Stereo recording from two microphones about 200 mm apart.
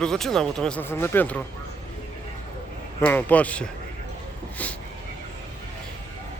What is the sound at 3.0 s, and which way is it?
Speech, 10° left (ahead or behind).